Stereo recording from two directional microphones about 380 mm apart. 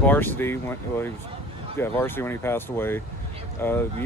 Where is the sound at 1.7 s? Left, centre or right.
Centre.